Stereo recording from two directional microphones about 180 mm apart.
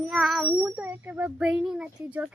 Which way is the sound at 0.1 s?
Centre (ahead or behind).